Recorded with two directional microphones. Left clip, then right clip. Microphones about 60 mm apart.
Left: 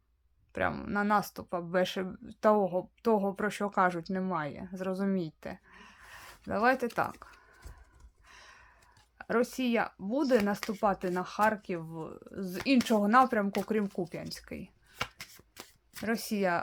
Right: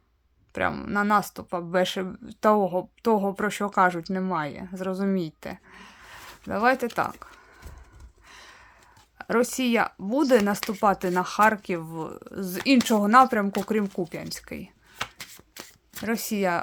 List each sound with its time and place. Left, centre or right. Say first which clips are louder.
0.5 s speech: right 6 dB; centre
8.3 s a sound: right 6 dB; centre
9.1 s speech: right 6 dB; right
10.6 s speech: right 7 dB; right; by 15.0 s centre
16.0 s speech: right 5 dB; centre